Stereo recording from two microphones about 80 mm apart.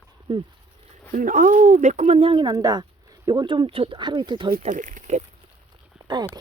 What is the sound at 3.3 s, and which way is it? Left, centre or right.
Speech, right.